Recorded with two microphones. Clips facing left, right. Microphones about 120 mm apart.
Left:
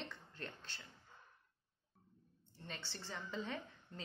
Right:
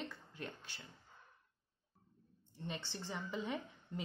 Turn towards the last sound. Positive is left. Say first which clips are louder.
# right 4 dB
turn(degrees=-15)  # may be behind; listen again after turning